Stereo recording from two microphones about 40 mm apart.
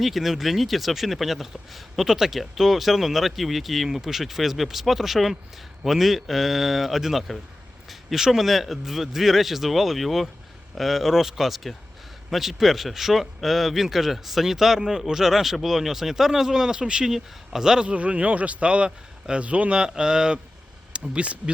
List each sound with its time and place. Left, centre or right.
0.0 s speech: centre
17.8 s a man's voice: right
19.9 s speech: centre
20.9 s speech: right